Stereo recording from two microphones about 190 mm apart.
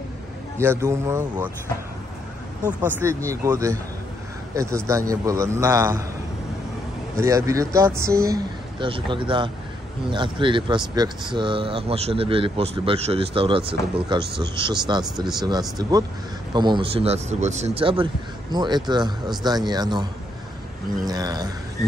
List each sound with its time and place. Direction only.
0.6 s a man's voice: 15° right (ahead or behind)
2.6 s a man's voice: 15° right (ahead or behind)
7.2 s a man's voice: 15° right (ahead or behind)
21.1 s speech: 20° right (ahead or behind)